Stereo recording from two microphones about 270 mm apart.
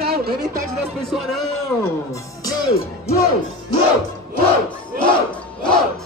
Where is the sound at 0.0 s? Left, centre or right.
Right.